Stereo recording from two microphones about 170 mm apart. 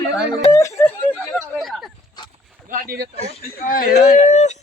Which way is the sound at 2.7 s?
60° right (ahead or behind).